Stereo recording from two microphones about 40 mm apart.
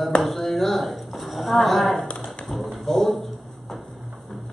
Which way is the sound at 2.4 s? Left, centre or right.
Centre.